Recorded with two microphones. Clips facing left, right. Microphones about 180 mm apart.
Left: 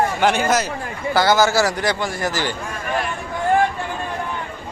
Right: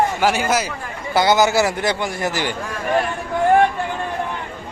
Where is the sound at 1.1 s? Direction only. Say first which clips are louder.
Right 1 dB; 20° right (ahead or behind).